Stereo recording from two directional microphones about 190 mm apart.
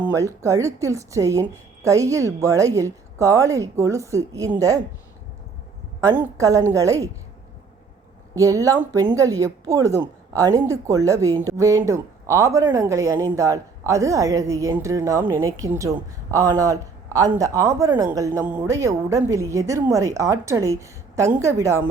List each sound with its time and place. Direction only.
0.0 s a woman's voice: 15° right (ahead or behind)
6.0 s a woman's voice: 15° right (ahead or behind)
8.4 s a woman's voice: 15° right (ahead or behind)